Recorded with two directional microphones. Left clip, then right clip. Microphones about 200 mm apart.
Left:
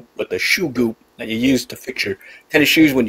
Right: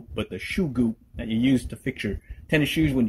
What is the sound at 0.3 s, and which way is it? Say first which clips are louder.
Speech: left 15 dB; 20° left (ahead or behind).